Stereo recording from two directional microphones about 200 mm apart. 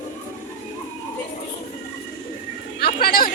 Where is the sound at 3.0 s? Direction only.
45° left (ahead or behind).